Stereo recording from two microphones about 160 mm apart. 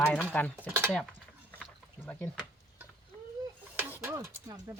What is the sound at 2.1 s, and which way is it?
Speech, 10° left (ahead or behind).